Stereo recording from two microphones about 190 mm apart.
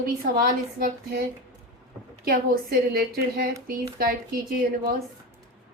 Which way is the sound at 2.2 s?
50° right (ahead or behind).